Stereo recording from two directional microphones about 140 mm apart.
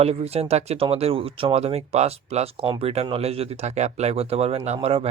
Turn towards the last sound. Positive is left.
turn(degrees=-45)  # may be behind; listen again after turning